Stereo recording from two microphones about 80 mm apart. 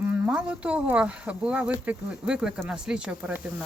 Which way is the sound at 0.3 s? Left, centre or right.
Centre.